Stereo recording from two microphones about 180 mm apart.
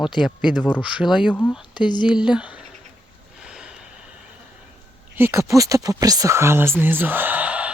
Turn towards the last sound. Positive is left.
turn(degrees=-5)  # may be behind; listen again after turning